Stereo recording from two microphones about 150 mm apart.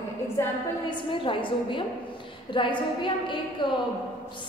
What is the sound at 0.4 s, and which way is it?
Speech, 20° left (ahead or behind).